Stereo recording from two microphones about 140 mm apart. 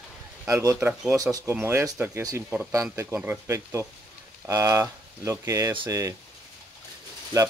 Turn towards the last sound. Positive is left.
turn(degrees=-25)  # may be behind; listen again after turning